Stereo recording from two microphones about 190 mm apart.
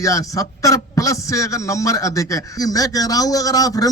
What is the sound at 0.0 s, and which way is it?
Speech, 15° left (ahead or behind).